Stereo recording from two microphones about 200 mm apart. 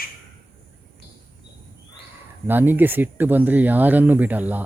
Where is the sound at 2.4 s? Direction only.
10° right (ahead or behind).